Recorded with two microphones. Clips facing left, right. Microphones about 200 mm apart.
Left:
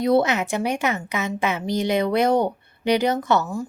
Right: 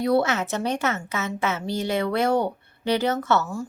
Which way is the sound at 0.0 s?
20° left (ahead or behind).